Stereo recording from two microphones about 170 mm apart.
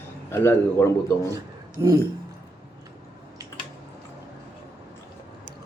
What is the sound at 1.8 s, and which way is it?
Speech, 20° right (ahead or behind).